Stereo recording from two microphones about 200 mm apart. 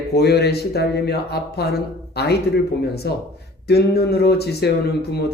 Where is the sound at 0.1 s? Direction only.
55° left (ahead or behind).